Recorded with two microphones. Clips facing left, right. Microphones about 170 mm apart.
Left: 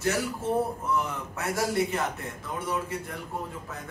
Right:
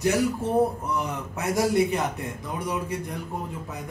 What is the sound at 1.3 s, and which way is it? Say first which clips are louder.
Speech: right 5 dB; 15° right (ahead or behind).